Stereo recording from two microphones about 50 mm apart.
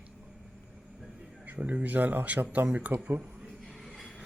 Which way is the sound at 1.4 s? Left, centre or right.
Right.